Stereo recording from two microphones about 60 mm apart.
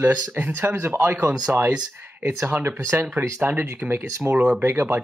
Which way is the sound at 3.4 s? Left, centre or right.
Right.